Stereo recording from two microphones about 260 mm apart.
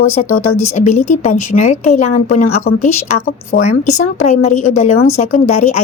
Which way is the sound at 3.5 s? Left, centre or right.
Left.